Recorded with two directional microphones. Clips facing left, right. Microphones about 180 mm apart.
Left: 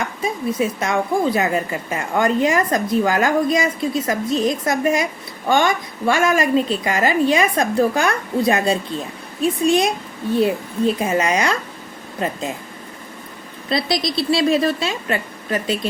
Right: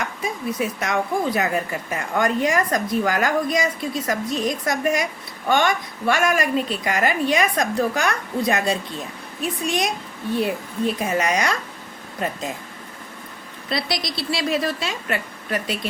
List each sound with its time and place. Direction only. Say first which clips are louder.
0.0 s speech: left 4 dB; 25° left (ahead or behind)
13.7 s speech: left 5 dB; 25° left (ahead or behind)